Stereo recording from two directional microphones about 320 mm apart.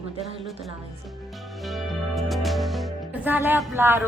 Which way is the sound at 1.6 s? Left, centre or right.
Centre.